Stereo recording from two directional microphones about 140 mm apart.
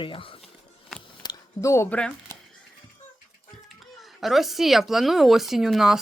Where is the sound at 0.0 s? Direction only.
40° left (ahead or behind).